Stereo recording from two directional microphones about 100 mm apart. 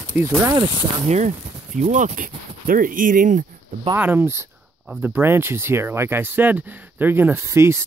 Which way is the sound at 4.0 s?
20° right (ahead or behind).